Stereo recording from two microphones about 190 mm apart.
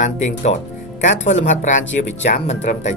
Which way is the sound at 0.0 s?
35° left (ahead or behind).